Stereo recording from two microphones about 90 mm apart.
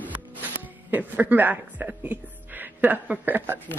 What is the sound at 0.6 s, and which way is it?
Speech, 20° right (ahead or behind).